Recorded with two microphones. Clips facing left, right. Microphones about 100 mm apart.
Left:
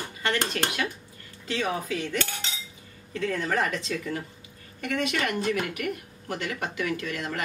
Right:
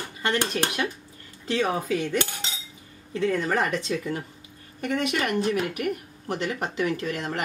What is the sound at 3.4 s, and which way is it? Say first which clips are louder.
Speech: right 2 dB; 30° right (ahead or behind).